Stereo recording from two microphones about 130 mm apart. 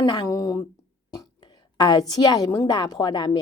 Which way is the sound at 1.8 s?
30° left (ahead or behind).